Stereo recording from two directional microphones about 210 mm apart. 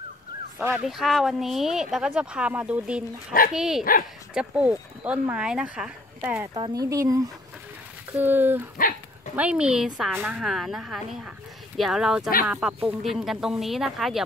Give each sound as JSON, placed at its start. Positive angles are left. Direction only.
{"t": 0.6, "sound": "a woman's voice", "side_deg": -5}
{"t": 6.5, "sound": "speech", "side_deg": -15}
{"t": 8.7, "sound": "dog", "side_deg": 40}
{"t": 9.3, "sound": "a woman's voice", "side_deg": -5}